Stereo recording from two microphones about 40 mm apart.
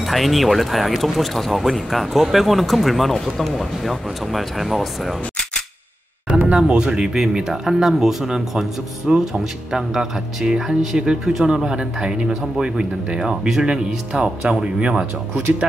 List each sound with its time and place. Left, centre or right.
0.0 s speech: centre
6.4 s speech: right